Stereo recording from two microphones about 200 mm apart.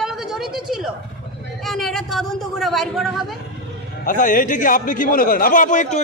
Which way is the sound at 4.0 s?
40° left (ahead or behind).